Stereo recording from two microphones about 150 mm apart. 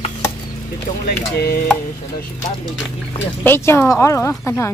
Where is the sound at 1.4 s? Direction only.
90° left.